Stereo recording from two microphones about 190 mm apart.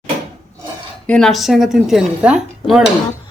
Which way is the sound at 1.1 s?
Centre (ahead or behind).